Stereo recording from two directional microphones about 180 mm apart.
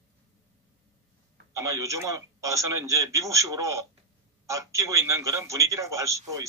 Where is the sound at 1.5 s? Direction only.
15° right (ahead or behind).